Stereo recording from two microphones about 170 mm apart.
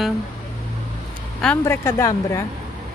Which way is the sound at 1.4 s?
10° left (ahead or behind).